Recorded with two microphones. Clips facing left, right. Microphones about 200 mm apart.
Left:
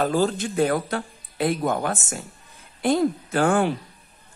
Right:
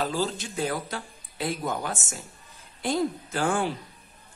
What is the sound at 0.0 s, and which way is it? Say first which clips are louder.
A woman's voice: left 7 dB; 55° left (ahead or behind).